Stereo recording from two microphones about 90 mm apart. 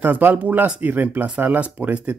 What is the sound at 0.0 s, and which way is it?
Speech, 20° right (ahead or behind).